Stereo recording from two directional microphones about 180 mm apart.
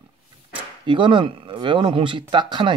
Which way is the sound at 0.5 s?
25° right (ahead or behind).